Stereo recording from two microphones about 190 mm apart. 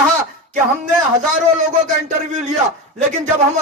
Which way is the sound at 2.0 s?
40° right (ahead or behind).